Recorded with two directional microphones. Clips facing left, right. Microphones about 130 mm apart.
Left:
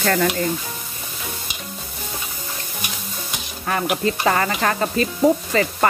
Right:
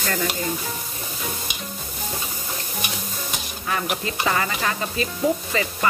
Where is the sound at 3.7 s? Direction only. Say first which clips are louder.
Left 5 dB; 45° left (ahead or behind).